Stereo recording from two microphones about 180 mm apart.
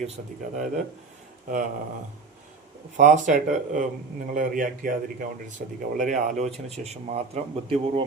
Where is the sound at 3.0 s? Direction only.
45° right (ahead or behind).